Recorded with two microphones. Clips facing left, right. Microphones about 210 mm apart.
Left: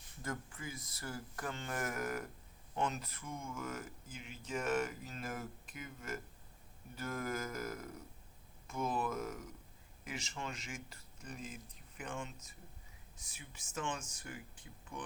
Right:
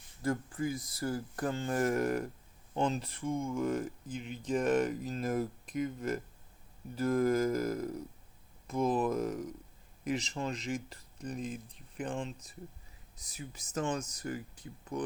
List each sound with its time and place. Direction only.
0.2 s speech: 35° right (ahead or behind)